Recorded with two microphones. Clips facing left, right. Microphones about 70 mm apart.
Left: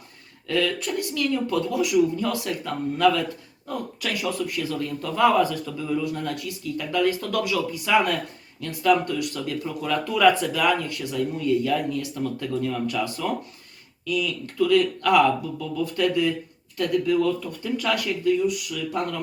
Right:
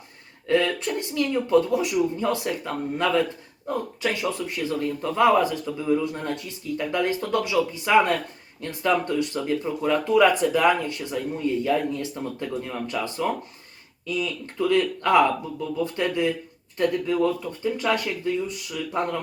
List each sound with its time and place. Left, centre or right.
0.4 s speech: right